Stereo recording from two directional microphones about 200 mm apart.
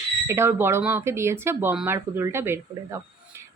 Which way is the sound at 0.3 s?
10° right (ahead or behind).